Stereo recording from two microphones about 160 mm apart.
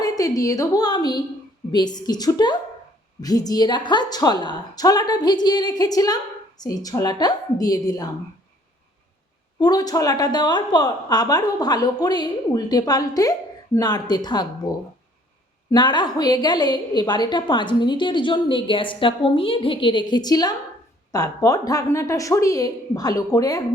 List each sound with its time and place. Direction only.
0.0 s a woman's voice: 20° left (ahead or behind)
9.6 s a woman's voice: 25° left (ahead or behind)
15.7 s a woman's voice: 25° left (ahead or behind)